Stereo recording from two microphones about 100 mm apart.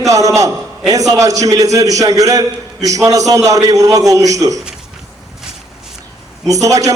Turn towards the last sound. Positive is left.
turn(degrees=-35)  # may be behind; listen again after turning